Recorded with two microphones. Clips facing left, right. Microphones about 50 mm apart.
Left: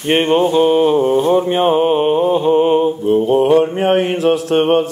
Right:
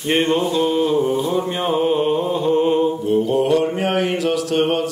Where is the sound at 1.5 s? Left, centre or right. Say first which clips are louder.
Left 6 dB; left.